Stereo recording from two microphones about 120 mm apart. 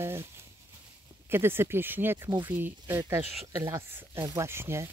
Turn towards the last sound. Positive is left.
turn(degrees=-20)  # may be behind; listen again after turning